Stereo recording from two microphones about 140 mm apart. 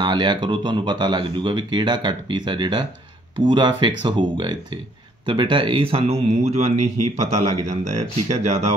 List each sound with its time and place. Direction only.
0.0 s speech: 30° right (ahead or behind)